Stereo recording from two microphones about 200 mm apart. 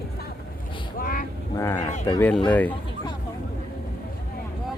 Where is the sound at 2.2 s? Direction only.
10° left (ahead or behind).